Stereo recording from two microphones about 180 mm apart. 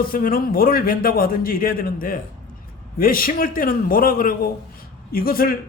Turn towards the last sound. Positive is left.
turn(degrees=55)  # may be behind; listen again after turning